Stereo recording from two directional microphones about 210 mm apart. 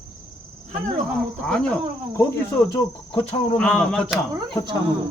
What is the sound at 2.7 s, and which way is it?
Speech, 25° left (ahead or behind).